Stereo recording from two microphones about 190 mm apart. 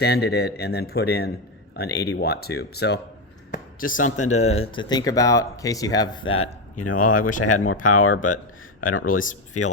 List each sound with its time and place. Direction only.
0.0 s a man's voice: 60° left (ahead or behind)
3.5 s speech: 45° left (ahead or behind); by 6.3 s 20° left (ahead or behind)
6.9 s speech: 45° left (ahead or behind)